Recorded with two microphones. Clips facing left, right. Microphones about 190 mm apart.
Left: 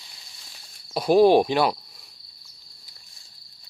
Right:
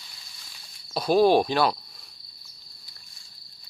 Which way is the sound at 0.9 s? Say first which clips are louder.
Left 3 dB; 15° left (ahead or behind).